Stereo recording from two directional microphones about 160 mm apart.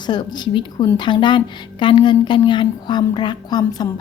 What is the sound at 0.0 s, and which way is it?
A woman's voice, 25° left (ahead or behind).